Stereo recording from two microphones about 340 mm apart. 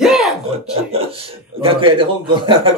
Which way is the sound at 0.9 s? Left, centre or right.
Centre.